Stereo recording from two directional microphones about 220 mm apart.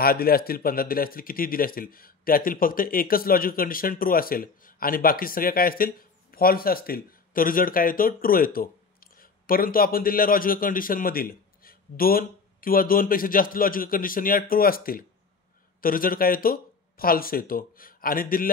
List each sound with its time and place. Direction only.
0.0 s speech: 45° left (ahead or behind)